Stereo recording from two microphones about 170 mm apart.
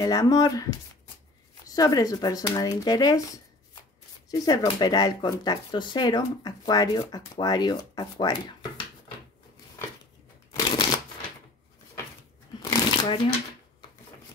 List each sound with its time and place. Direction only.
0.0 s speech: 20° left (ahead or behind)
4.3 s speech: 25° left (ahead or behind)
12.6 s shuffling cards: 30° left (ahead or behind)